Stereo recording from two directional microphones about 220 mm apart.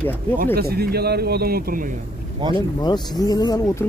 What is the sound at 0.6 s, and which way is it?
Speech, 45° right (ahead or behind).